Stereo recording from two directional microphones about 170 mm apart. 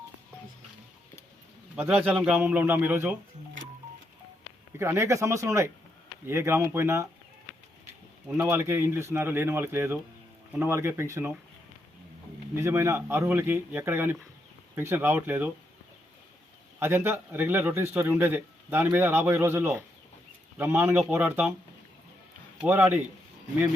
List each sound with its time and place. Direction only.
1.7 s a man's voice: 10° right (ahead or behind)
4.8 s a man's voice: 15° right (ahead or behind)
8.3 s a man's voice: 15° right (ahead or behind)
12.5 s a man's voice: 15° right (ahead or behind)
16.8 s a man's voice: 15° right (ahead or behind)
22.6 s a man's voice: 10° right (ahead or behind)